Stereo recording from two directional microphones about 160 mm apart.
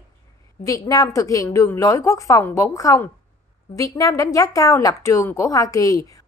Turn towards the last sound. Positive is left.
turn(degrees=20)  # may be behind; listen again after turning